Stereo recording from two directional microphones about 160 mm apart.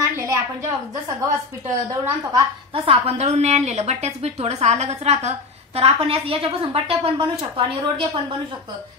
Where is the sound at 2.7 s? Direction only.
35° right (ahead or behind).